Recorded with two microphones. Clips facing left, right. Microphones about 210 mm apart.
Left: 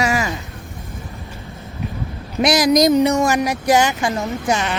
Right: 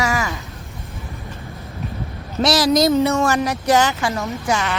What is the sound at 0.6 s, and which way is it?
Vehicle, centre (ahead or behind).